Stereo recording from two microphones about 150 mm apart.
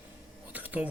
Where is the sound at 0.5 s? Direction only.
10° right (ahead or behind).